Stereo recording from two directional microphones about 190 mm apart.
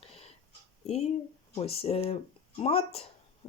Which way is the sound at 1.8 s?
30° left (ahead or behind).